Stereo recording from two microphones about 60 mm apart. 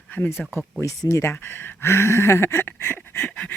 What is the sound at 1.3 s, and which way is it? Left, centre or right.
Speech, left.